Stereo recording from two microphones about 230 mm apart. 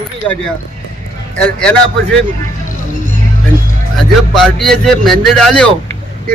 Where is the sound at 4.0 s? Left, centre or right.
Centre.